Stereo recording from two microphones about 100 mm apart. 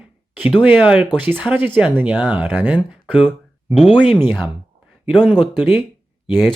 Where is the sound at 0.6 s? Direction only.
10° right (ahead or behind).